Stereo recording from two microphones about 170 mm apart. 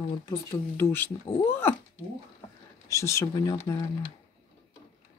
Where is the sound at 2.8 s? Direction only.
15° left (ahead or behind).